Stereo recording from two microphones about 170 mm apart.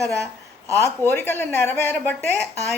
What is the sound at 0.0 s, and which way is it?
A woman's voice, 20° right (ahead or behind).